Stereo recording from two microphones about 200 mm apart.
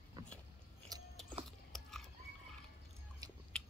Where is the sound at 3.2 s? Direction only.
20° right (ahead or behind).